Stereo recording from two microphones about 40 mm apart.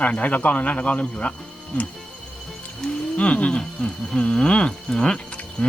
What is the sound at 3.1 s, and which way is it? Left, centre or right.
Speech, left.